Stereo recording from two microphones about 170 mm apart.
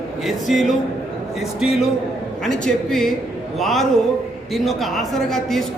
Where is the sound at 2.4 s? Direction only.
5° left (ahead or behind).